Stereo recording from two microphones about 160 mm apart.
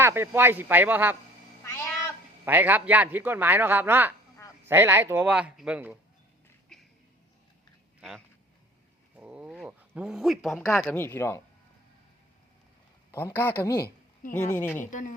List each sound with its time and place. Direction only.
0.0 s a man's voice: 15° right (ahead or behind)
1.6 s cat: 15° left (ahead or behind)
2.4 s a man's voice: 10° right (ahead or behind)
6.7 s a sound: 5° left (ahead or behind)
9.1 s a sound: 10° right (ahead or behind)
10.7 s speech: 5° left (ahead or behind)
10.9 s a man's voice: 15° left (ahead or behind)
13.1 s a man's voice: 15° left (ahead or behind)
14.8 s a woman's voice: 55° left (ahead or behind)